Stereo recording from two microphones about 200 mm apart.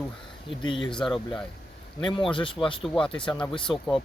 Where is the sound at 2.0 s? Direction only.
25° left (ahead or behind).